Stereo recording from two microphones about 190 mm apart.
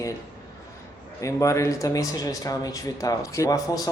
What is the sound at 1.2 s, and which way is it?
Speech, 15° left (ahead or behind).